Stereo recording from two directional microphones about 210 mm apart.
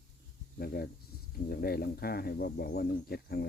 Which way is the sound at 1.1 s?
50° left (ahead or behind).